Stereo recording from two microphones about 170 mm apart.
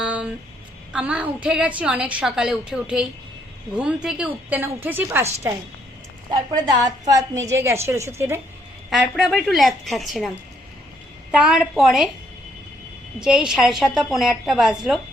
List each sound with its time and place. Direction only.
0.0 s a sound: 5° right (ahead or behind)
0.9 s a woman's voice: 10° right (ahead or behind)
6.3 s a woman's voice: 25° right (ahead or behind)
8.9 s a woman's voice: centre (ahead or behind)
13.1 s a woman's voice: 5° right (ahead or behind)